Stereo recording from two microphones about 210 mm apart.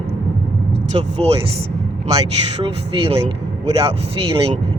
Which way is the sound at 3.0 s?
25° right (ahead or behind).